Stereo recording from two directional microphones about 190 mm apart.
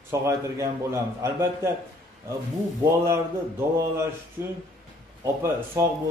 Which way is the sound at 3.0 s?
15° right (ahead or behind).